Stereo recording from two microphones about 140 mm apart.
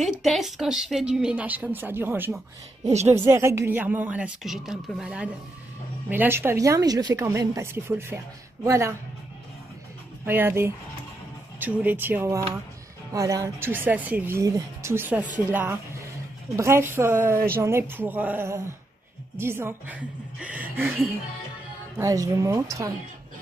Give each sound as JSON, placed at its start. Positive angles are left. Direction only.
{"t": 0.0, "sound": "speech", "side_deg": 0}
{"t": 2.8, "sound": "speech", "side_deg": -50}
{"t": 3.1, "sound": "a woman's voice", "side_deg": -20}
{"t": 10.2, "sound": "a woman's voice", "side_deg": -15}